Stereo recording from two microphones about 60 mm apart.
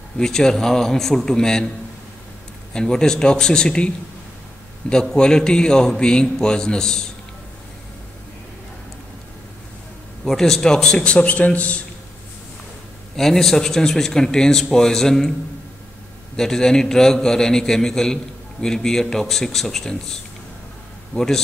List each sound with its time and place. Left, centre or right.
0.2 s a man's voice: centre
2.7 s a man's voice: centre
5.0 s a man's voice: centre
10.2 s a man's voice: centre; by 11.8 s left
13.1 s a man's voice: centre
16.3 s a man's voice: centre